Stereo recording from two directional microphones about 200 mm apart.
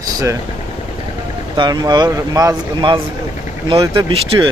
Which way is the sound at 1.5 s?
20° right (ahead or behind).